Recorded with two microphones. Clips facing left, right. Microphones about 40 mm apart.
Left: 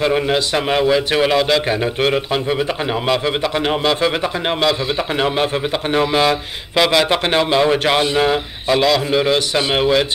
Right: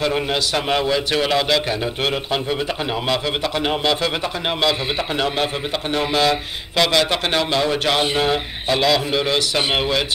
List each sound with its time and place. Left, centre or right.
0.0 s a man's voice: centre
3.6 s speech: centre
5.9 s a man's voice: centre
8.2 s speech: centre